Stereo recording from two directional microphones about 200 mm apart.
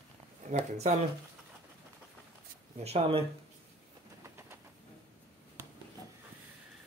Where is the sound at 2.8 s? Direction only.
30° right (ahead or behind).